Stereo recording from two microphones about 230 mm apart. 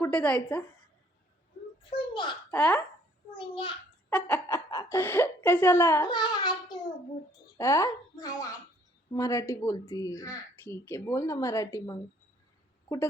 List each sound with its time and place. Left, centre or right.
0.0 s a woman's voice: centre
1.8 s a sound: left
2.5 s speech: centre
3.3 s a child's voice: left
4.1 s speech: centre